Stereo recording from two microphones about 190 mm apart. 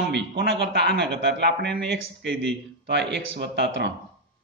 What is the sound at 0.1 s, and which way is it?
Speech, 65° right (ahead or behind).